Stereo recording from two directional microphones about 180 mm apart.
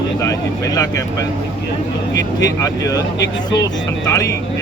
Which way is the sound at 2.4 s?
20° left (ahead or behind).